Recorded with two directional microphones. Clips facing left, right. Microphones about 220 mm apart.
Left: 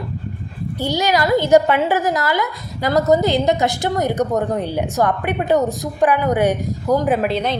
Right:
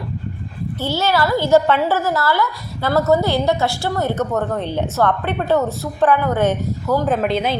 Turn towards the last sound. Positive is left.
turn(degrees=0)  # may be behind; listen again after turning